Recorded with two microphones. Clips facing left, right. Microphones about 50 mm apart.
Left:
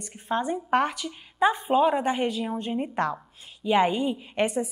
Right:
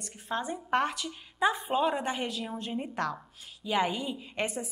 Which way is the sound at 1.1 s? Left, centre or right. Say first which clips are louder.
Left 5 dB; centre.